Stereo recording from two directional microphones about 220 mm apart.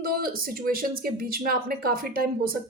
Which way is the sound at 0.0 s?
40° right (ahead or behind).